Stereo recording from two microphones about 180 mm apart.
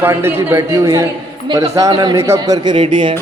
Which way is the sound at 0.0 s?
15° right (ahead or behind).